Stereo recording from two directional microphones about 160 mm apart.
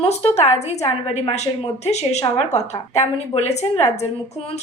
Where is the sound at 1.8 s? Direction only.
45° left (ahead or behind).